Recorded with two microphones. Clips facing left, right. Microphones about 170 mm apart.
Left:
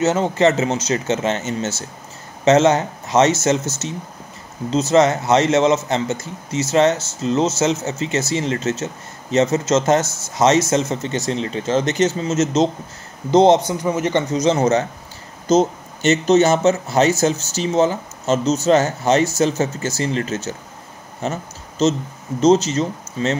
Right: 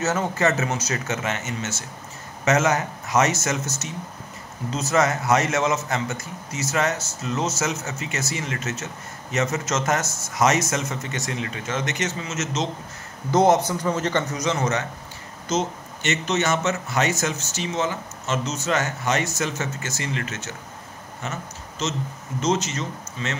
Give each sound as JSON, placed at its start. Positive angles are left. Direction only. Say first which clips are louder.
{"t": 0.0, "sound": "a man's voice", "louder": "left 7 dB", "side_deg": 20}
{"t": 13.3, "sound": "a man's voice", "louder": "left 5 dB", "side_deg": 20}
{"t": 21.2, "sound": "a sound", "louder": "left 8 dB", "side_deg": 35}
{"t": 22.4, "sound": "speech", "louder": "left 10 dB", "side_deg": 35}